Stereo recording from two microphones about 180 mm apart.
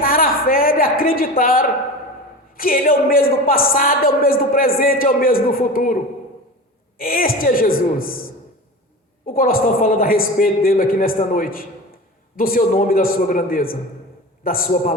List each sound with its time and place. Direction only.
0.0 s a sound: 55° left (ahead or behind)
2.6 s a man's voice: 50° left (ahead or behind)
7.0 s a man's voice: 55° left (ahead or behind)
9.2 s a man's voice: 55° left (ahead or behind)